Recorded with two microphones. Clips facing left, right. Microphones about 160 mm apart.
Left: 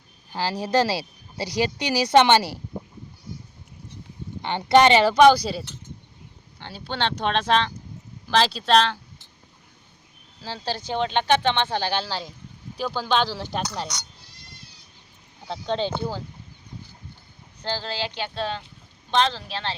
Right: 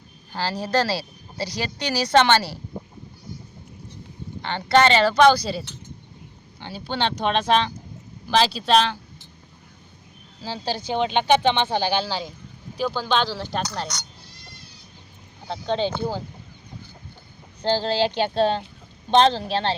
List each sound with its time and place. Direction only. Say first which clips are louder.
0.3 s speech: left 1 dB; 15° left (ahead or behind)
4.4 s speech: left 2 dB; 15° left (ahead or behind)
6.6 s speech: right 2 dB; 5° right (ahead or behind)
10.4 s speech: right 2 dB; 5° right (ahead or behind)
15.4 s speech: right 2 dB; centre (ahead or behind)
17.6 s speech: right 8 dB; 30° right (ahead or behind)